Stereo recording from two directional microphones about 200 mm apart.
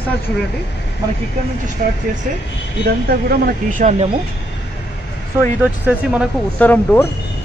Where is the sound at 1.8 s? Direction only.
40° right (ahead or behind).